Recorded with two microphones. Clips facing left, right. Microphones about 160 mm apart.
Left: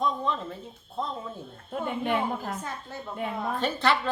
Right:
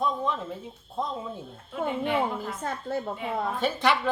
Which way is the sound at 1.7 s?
50° left (ahead or behind).